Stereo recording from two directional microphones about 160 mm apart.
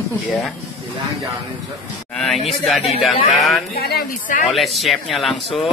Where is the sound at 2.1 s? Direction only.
Centre (ahead or behind).